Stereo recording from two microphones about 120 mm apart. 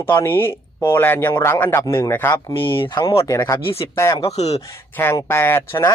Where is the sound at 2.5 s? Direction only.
45° left (ahead or behind).